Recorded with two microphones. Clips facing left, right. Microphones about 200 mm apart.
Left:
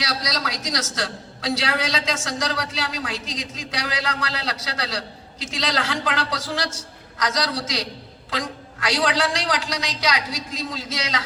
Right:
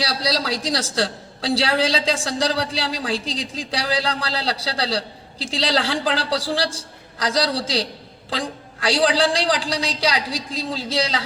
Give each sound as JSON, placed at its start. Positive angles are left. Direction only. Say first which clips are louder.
{"t": 0.0, "sound": "a man's voice", "louder": "right 4 dB", "side_deg": -30}